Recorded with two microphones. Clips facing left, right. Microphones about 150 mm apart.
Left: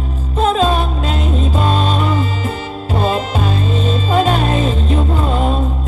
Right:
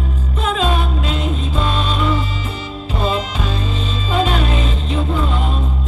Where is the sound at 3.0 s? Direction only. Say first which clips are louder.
Left 3 dB; 45° left (ahead or behind).